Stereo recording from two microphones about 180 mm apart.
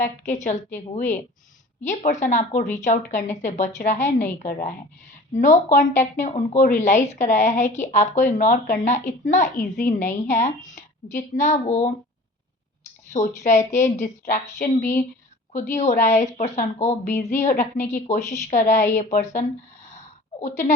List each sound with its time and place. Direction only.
0.0 s a woman's voice: 40° left (ahead or behind)
5.3 s a woman's voice: 45° left (ahead or behind)
13.1 s a woman's voice: 40° left (ahead or behind)